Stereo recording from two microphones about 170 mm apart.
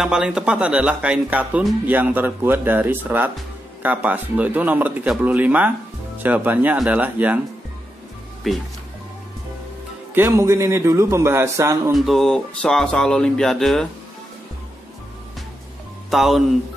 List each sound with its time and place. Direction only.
0.0 s speech: 5° right (ahead or behind)
8.5 s speech: centre (ahead or behind)
10.1 s speech: 15° right (ahead or behind)
11.9 s speech: centre (ahead or behind)
16.1 s speech: centre (ahead or behind)